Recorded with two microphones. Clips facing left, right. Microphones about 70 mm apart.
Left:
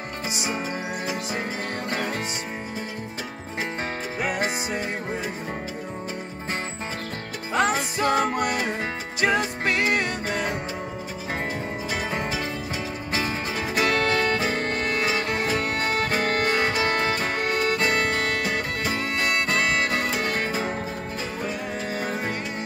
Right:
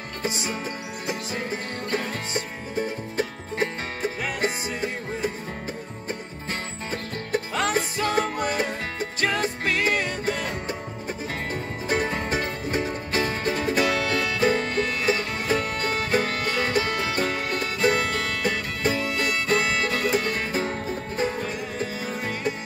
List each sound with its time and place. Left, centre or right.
0.2 s music: centre
7.5 s music: left
12.3 s music: right
13.7 s music: left